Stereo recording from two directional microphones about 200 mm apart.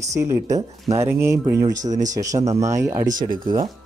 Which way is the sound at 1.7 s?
40° right (ahead or behind).